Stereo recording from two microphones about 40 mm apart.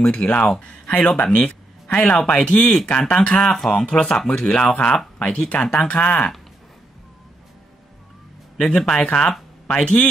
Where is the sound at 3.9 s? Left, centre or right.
Left.